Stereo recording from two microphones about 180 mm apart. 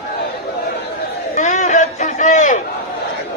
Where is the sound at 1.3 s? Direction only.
40° left (ahead or behind).